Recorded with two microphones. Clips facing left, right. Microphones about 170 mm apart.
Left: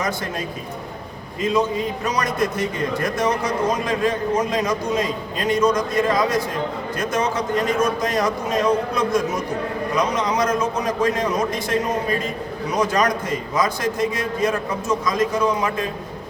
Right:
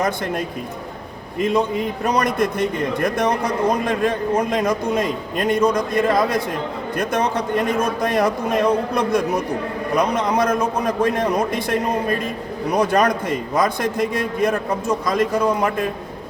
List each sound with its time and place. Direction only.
1.4 s a man's voice: 55° right (ahead or behind)